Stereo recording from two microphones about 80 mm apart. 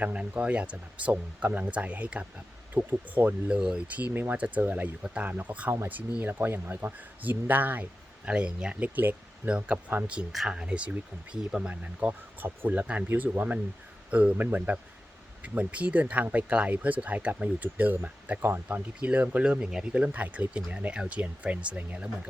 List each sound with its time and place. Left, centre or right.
0.0 s speech: centre
10.3 s speech: centre